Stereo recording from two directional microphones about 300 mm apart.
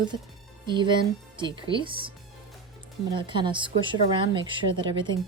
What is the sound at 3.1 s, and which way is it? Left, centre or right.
Speech, centre.